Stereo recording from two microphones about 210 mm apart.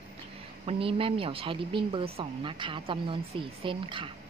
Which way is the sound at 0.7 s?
25° right (ahead or behind).